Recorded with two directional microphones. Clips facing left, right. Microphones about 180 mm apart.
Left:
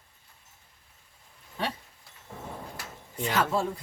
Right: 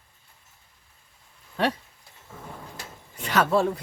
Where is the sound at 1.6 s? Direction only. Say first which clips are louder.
Right 8 dB; 70° right (ahead or behind).